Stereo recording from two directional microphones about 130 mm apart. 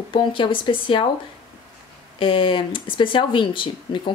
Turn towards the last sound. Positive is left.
turn(degrees=40)  # may be behind; listen again after turning